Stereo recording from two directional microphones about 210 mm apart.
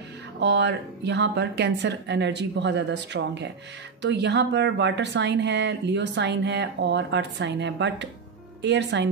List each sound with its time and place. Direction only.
0.4 s speech: 55° right (ahead or behind)